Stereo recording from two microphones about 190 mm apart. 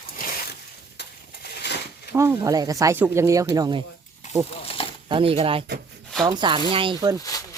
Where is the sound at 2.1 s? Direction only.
15° right (ahead or behind).